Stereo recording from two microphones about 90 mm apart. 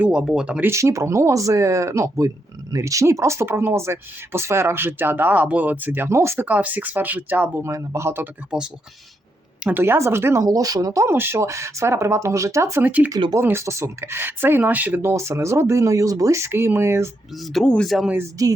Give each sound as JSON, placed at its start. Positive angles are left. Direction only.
{"t": 0.0, "sound": "speech", "side_deg": -10}
{"t": 0.6, "sound": "speech", "side_deg": -35}
{"t": 6.4, "sound": "speech", "side_deg": -20}
{"t": 7.6, "sound": "speech", "side_deg": -30}
{"t": 8.4, "sound": "speech", "side_deg": -10}
{"t": 9.6, "sound": "speech", "side_deg": -25}
{"t": 12.8, "sound": "speech", "side_deg": -15}
{"t": 13.4, "sound": "speech", "side_deg": -30}
{"t": 15.1, "sound": "speech", "side_deg": -35}
{"t": 17.5, "sound": "speech", "side_deg": 10}
{"t": 18.4, "sound": "speech", "side_deg": -40}